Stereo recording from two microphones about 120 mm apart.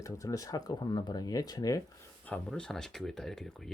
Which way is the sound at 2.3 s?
5° left (ahead or behind).